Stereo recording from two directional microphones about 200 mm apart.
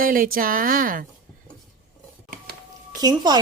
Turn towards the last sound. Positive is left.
turn(degrees=-20)  # may be behind; listen again after turning